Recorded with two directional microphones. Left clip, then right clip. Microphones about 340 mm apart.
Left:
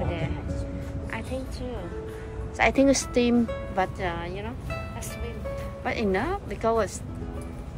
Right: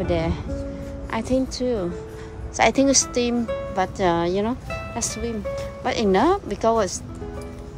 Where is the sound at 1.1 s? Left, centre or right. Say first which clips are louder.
Right 11 dB; centre.